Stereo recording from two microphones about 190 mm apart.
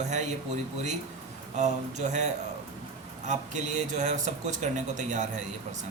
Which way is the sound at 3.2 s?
40° right (ahead or behind).